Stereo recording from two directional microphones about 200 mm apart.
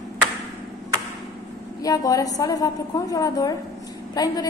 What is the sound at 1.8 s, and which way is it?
A woman's voice, 20° left (ahead or behind).